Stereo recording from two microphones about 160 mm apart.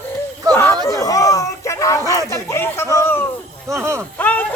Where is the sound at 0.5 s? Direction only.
15° left (ahead or behind).